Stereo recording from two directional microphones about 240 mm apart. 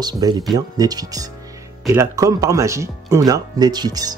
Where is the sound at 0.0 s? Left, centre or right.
Centre.